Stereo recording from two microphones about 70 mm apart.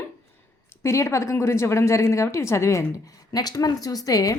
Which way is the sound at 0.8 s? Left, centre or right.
Left.